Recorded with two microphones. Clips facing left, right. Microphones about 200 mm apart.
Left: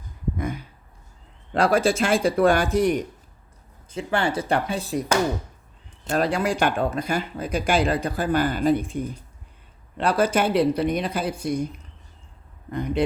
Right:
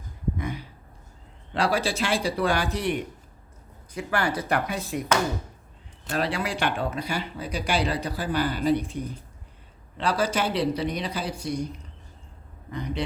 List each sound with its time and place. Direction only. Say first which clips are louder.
0.3 s a sound: left 3 dB; 45° left (ahead or behind)
1.5 s speech: left 5 dB; 50° left (ahead or behind)
3.9 s speech: left 3 dB; 25° left (ahead or behind)
6.1 s speech: left 5 dB; 45° left (ahead or behind)
12.7 s speech: left 7 dB; 50° left (ahead or behind)